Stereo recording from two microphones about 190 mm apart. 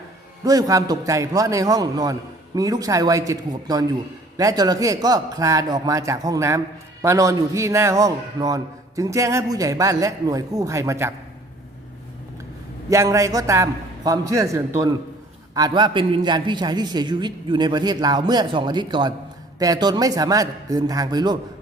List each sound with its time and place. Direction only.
0.4 s a man's voice: 20° right (ahead or behind)
12.9 s a man's voice: 15° right (ahead or behind)